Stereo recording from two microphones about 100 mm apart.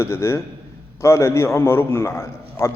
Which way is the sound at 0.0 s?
30° left (ahead or behind).